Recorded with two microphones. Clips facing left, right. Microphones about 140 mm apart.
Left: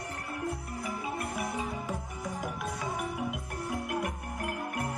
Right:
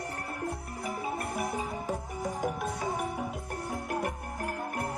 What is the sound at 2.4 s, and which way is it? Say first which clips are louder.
Music: right 4 dB; 50° right (ahead or behind).